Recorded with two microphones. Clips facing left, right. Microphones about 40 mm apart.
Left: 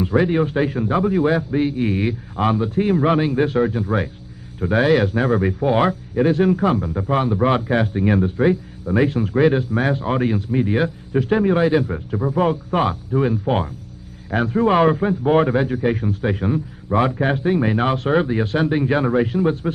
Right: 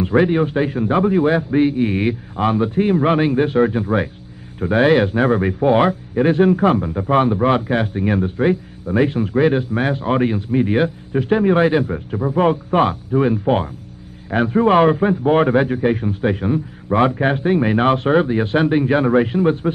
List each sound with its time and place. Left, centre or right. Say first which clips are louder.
0.0 s a man's voice: right 2 dB; centre
7.3 s a man's voice: right 1 dB; centre
16.9 s speech: right 2 dB; centre
18.1 s a man's voice: right 3 dB; centre
18.4 s speech: right 3 dB; right